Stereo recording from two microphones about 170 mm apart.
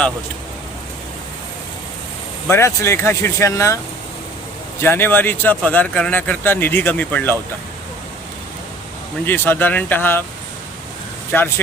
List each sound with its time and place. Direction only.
2.5 s speech: 15° left (ahead or behind)
4.8 s speech: 15° left (ahead or behind)
9.2 s speech: 10° left (ahead or behind)
11.3 s speech: 10° left (ahead or behind)